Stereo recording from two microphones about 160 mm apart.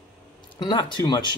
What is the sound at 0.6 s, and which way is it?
Speech, 30° left (ahead or behind).